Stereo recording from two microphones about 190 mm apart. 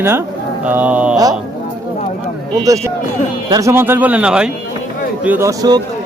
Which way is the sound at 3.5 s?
15° right (ahead or behind).